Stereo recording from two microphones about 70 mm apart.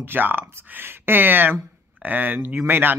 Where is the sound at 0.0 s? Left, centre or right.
Right.